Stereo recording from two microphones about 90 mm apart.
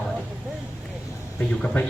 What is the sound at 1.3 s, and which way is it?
Speech, 15° left (ahead or behind).